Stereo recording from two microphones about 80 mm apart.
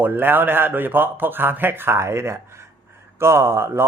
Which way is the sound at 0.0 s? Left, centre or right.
Right.